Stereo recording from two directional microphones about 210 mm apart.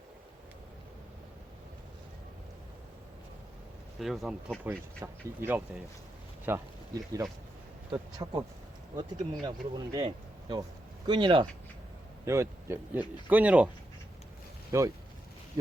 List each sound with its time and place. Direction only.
4.0 s speech: centre (ahead or behind)
14.7 s speech: 15° right (ahead or behind)